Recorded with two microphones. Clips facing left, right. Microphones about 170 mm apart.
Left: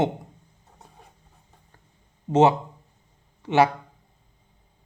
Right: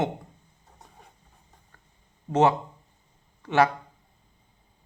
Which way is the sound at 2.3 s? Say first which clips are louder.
Left 3 dB; 25° left (ahead or behind).